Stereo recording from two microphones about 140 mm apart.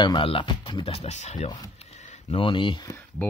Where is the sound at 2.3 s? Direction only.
40° left (ahead or behind).